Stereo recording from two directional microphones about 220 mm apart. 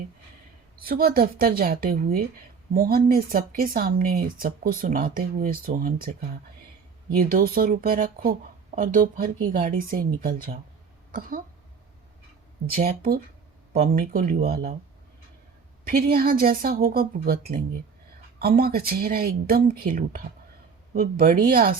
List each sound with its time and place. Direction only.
0.8 s speech: 40° right (ahead or behind)
12.7 s speech: 40° right (ahead or behind)
15.9 s speech: 45° right (ahead or behind)
18.3 s speech: 45° right (ahead or behind)